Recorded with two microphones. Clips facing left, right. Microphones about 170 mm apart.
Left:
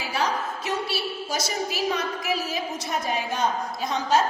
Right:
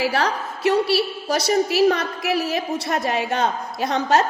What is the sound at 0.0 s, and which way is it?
A woman's voice, 70° right (ahead or behind).